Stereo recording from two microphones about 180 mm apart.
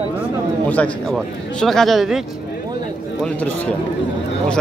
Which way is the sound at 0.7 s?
5° left (ahead or behind).